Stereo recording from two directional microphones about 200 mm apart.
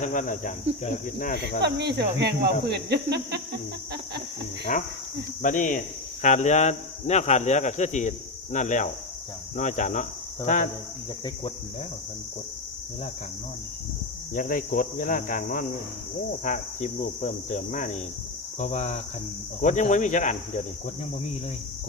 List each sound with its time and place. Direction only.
0.0 s speech: 40° left (ahead or behind)
1.6 s speech: 55° right (ahead or behind)
4.7 s speech: 40° left (ahead or behind)
14.3 s speech: 45° left (ahead or behind)